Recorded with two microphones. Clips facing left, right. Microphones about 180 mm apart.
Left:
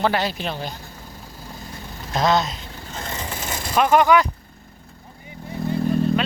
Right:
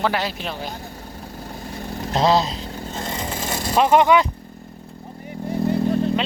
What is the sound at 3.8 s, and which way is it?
Speech, 25° right (ahead or behind).